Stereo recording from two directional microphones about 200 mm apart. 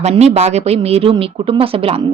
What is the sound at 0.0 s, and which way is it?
A woman's voice, 30° right (ahead or behind).